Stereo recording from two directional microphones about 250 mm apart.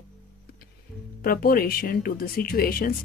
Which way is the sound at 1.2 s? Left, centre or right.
Left.